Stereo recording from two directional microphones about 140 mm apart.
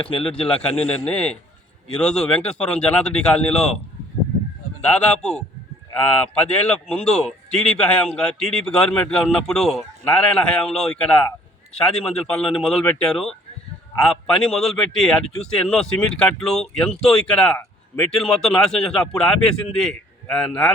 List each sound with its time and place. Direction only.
0.0 s a man's voice: 40° left (ahead or behind)
0.3 s a man's voice: 10° left (ahead or behind)
4.9 s a man's voice: 5° left (ahead or behind)